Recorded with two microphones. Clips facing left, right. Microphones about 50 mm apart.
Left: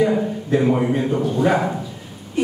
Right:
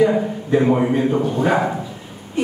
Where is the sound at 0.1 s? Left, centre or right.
Centre.